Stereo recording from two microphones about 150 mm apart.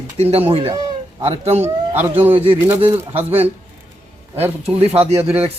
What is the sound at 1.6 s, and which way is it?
A man's voice, 15° right (ahead or behind).